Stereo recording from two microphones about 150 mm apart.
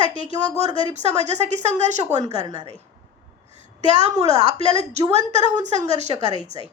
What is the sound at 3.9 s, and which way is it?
A woman's voice, 50° right (ahead or behind).